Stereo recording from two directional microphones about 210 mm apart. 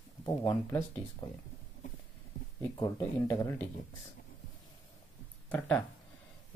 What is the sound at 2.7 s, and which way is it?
Speech, 15° left (ahead or behind).